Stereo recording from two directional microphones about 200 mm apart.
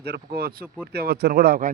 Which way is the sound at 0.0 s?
50° right (ahead or behind).